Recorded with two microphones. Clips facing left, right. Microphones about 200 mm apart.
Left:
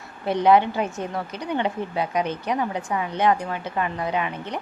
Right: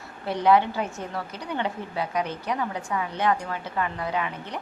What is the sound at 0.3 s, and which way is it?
A woman's voice, 20° left (ahead or behind).